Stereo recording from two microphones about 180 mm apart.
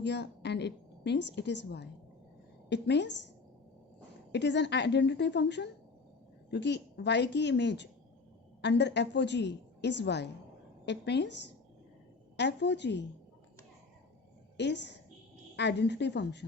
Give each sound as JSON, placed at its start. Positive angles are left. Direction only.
{"t": 0.0, "sound": "a woman's voice", "side_deg": 70}
{"t": 4.3, "sound": "a woman's voice", "side_deg": 75}
{"t": 14.5, "sound": "a woman's voice", "side_deg": 75}